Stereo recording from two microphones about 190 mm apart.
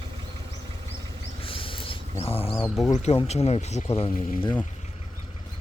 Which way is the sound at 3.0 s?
35° left (ahead or behind).